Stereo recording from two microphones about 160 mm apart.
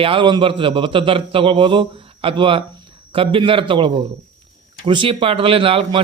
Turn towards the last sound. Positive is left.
turn(degrees=-35)  # may be behind; listen again after turning